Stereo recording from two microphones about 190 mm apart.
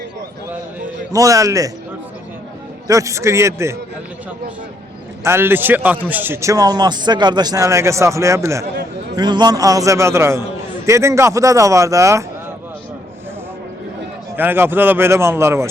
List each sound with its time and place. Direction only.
1.1 s a man's voice: 15° right (ahead or behind)
2.8 s a man's voice: 15° right (ahead or behind)
5.2 s a man's voice: 10° right (ahead or behind)
14.3 s a man's voice: 10° right (ahead or behind)